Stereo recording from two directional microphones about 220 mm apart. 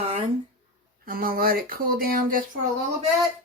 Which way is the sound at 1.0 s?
40° right (ahead or behind).